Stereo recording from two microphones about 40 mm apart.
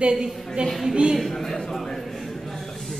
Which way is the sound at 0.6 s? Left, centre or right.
Centre.